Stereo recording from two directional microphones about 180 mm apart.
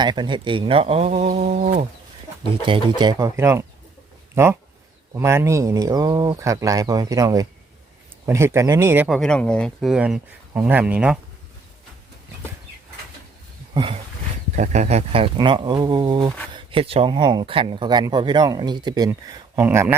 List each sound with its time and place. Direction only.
0.0 s speech: 25° right (ahead or behind)
1.1 s a sound: 45° right (ahead or behind)
2.6 s speech: 25° right (ahead or behind)
9.0 s speech: centre (ahead or behind)
13.7 s a sound: 30° right (ahead or behind)
14.5 s speech: 45° right (ahead or behind); by 20.0 s 15° right (ahead or behind)